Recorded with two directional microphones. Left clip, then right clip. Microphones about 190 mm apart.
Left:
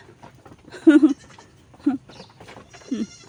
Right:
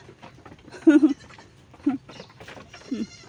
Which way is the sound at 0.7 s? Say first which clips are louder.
Left 3 dB; 15° left (ahead or behind).